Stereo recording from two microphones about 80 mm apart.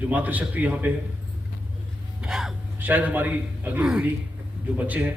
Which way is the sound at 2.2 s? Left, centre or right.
Centre.